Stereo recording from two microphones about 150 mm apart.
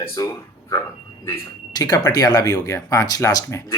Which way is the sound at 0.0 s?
15° left (ahead or behind).